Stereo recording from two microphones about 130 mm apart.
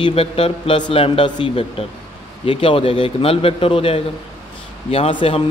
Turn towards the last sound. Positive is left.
turn(degrees=45)  # may be behind; listen again after turning